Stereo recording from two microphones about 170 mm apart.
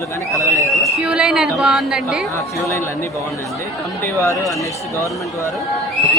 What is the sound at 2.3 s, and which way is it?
Speech, 15° left (ahead or behind).